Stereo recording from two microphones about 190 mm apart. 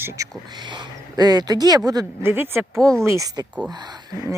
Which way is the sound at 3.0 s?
15° right (ahead or behind).